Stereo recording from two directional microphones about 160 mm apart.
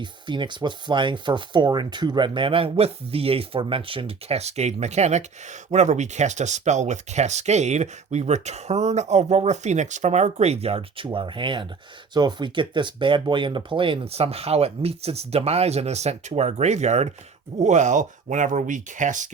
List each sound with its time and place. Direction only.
0.0 s speech: 30° right (ahead or behind); by 19.3 s 50° right (ahead or behind)